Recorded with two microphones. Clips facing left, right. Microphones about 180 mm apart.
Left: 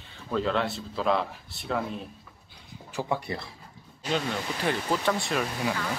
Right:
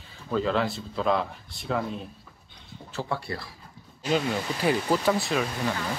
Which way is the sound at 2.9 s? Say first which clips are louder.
Left 1 dB; 15° left (ahead or behind).